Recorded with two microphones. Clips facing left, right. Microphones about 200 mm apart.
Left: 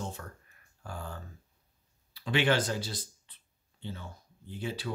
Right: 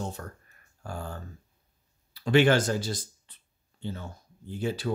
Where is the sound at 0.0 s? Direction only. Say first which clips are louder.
Right 4 dB; 40° right (ahead or behind).